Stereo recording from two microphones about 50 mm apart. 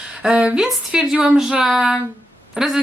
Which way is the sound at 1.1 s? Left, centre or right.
Right.